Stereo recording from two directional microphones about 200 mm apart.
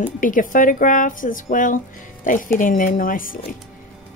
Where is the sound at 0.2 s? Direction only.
40° left (ahead or behind).